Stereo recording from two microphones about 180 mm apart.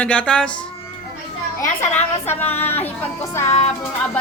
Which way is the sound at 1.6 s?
40° left (ahead or behind).